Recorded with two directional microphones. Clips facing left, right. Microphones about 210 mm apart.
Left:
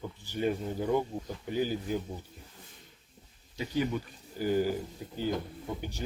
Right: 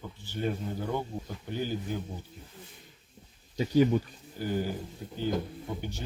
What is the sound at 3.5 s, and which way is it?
Speech, 40° right (ahead or behind).